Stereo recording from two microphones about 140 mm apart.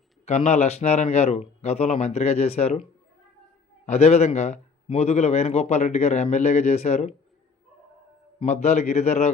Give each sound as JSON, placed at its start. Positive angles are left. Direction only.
{"t": 0.3, "sound": "a man's voice", "side_deg": 50}
{"t": 3.8, "sound": "a man's voice", "side_deg": 50}
{"t": 8.4, "sound": "a man's voice", "side_deg": 50}